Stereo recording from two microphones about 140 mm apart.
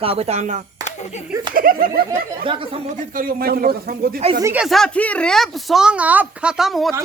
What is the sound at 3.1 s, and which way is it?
A man's voice, 90° right.